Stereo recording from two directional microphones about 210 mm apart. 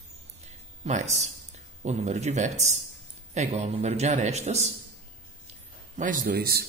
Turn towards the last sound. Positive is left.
turn(degrees=-45)  # may be behind; listen again after turning